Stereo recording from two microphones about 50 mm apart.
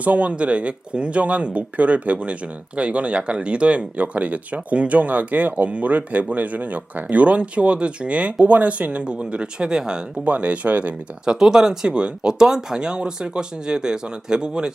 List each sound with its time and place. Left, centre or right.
0.0 s speech: right
10.2 s speech: right
11.3 s speech: centre